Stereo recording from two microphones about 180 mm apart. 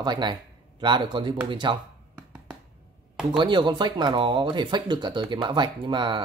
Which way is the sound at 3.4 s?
25° right (ahead or behind).